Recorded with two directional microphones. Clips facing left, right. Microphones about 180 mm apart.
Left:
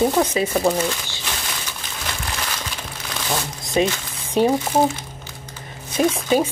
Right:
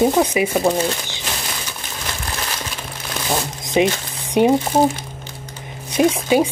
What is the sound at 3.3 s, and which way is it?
Speech, 20° right (ahead or behind).